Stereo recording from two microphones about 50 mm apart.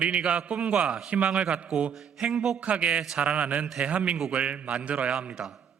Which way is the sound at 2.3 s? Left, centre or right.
Centre.